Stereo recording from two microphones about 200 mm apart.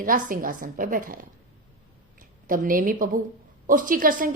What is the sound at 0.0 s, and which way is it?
A woman's voice, 45° right (ahead or behind).